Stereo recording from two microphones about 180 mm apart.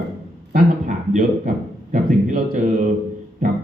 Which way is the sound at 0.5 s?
45° right (ahead or behind).